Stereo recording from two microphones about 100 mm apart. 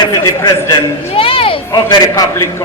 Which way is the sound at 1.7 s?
40° left (ahead or behind).